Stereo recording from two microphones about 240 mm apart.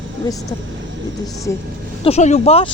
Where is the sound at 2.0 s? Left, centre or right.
Left.